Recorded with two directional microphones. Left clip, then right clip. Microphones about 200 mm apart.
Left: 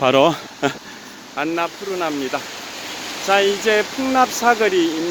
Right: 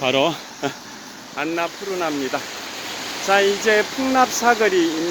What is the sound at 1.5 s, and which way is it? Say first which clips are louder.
Speech: left 1 dB; 15° left (ahead or behind).